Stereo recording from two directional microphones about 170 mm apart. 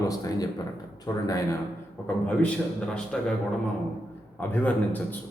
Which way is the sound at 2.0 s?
10° left (ahead or behind).